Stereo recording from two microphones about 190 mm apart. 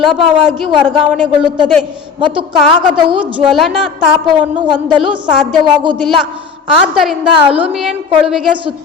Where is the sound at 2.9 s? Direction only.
25° right (ahead or behind).